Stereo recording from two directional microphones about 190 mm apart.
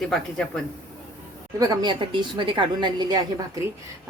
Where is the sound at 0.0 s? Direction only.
5° left (ahead or behind).